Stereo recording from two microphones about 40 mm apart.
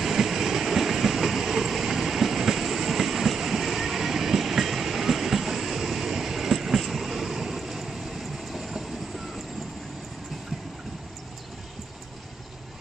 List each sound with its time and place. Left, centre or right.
0.0 s train: centre